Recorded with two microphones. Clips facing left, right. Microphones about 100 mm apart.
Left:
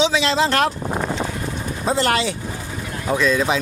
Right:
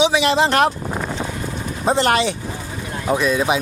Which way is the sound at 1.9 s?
20° right (ahead or behind).